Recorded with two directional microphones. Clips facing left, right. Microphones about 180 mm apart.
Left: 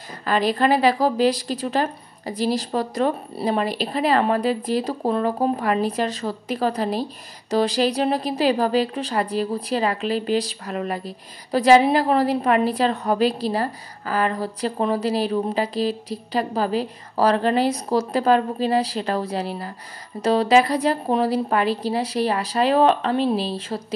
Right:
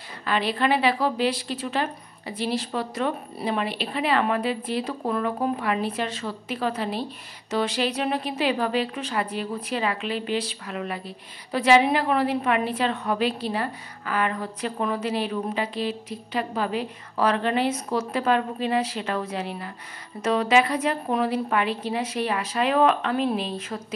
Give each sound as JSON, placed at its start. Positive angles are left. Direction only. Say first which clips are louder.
{"t": 0.2, "sound": "a woman's voice", "louder": "left 4 dB", "side_deg": 40}